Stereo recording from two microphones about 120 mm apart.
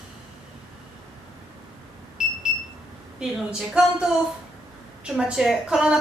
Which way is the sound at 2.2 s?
5° right (ahead or behind).